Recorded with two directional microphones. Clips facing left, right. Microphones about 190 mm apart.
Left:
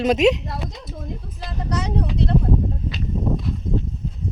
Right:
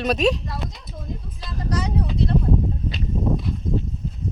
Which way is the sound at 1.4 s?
65° left (ahead or behind).